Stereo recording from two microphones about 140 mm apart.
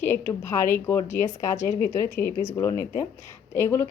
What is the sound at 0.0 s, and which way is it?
A woman's voice, 15° left (ahead or behind).